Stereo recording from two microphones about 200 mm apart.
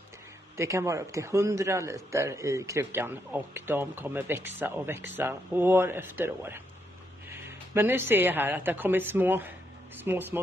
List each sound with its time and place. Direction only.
0.6 s a man's voice: 15° right (ahead or behind)